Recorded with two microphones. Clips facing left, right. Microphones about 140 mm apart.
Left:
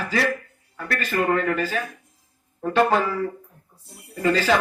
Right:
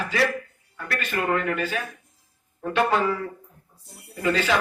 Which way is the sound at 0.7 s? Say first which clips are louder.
Left 3 dB; 40° left (ahead or behind).